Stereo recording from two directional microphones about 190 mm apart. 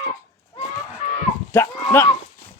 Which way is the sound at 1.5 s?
10° left (ahead or behind).